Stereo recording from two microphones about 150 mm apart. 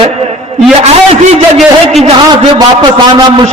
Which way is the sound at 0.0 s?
45° right (ahead or behind).